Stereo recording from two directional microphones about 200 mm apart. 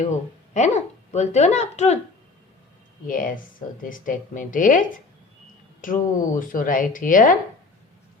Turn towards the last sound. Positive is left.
turn(degrees=40)  # may be behind; listen again after turning